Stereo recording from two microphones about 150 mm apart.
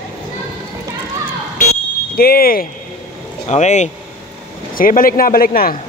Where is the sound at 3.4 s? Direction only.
50° left (ahead or behind).